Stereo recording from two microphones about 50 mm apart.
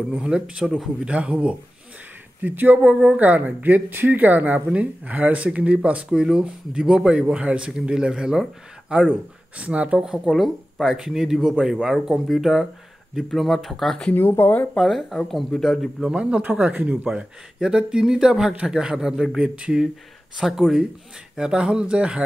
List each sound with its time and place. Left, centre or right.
0.2 s speech: centre
2.4 s speech: right
2.8 s speech: centre
3.2 s speech: right
6.1 s speech: centre
9.6 s speech: right
9.9 s speech: centre
14.1 s speech: left
14.8 s speech: centre
16.0 s speech: centre
16.4 s speech: right
20.3 s speech: centre; by 22.2 s right